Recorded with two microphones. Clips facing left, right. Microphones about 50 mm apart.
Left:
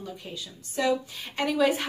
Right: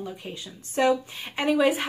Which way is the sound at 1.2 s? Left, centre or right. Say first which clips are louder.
Right 2 dB; centre.